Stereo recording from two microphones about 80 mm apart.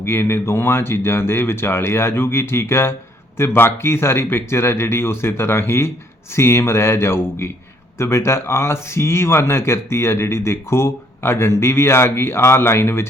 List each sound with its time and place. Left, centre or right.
0.0 s speech: left